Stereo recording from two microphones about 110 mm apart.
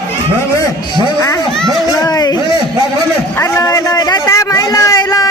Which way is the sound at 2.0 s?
35° left (ahead or behind).